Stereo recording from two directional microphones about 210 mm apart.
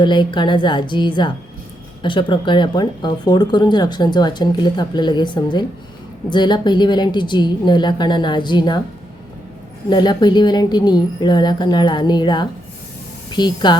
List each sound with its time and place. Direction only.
0.0 s speech: 20° left (ahead or behind)
9.9 s speech: 20° left (ahead or behind)